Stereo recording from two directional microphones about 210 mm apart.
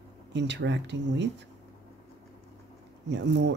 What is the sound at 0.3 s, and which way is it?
Speech, 55° right (ahead or behind).